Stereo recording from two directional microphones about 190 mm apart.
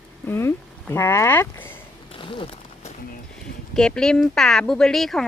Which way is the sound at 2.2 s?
25° left (ahead or behind).